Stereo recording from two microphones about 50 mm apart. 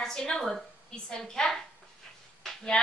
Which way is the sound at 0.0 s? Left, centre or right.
Centre.